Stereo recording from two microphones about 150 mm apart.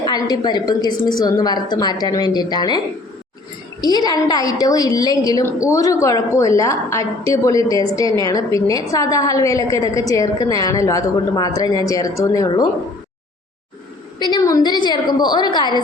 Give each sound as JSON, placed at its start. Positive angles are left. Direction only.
{"t": 0.0, "sound": "a woman's voice", "side_deg": 25}
{"t": 14.2, "sound": "a woman's voice", "side_deg": 30}